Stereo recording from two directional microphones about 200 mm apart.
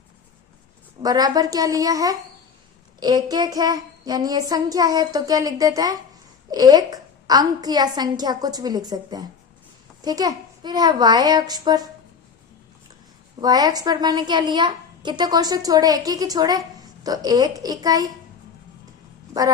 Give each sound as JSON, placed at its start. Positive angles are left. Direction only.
{"t": 1.0, "sound": "a woman's voice", "side_deg": -20}
{"t": 13.4, "sound": "a woman's voice", "side_deg": -20}